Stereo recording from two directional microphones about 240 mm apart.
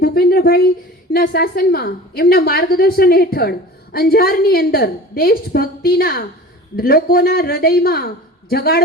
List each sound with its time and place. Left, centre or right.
0.0 s a woman's voice: left